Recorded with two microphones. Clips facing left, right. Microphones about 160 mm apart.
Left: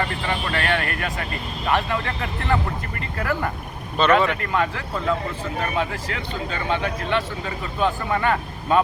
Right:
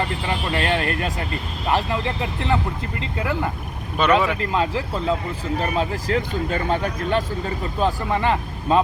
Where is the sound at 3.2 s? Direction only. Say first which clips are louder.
Even; 15° right (ahead or behind).